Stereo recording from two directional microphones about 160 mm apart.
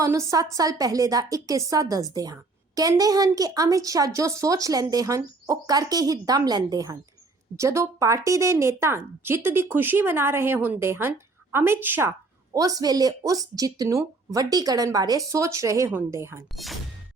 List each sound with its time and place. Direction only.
0.0 s a woman's voice: 15° right (ahead or behind)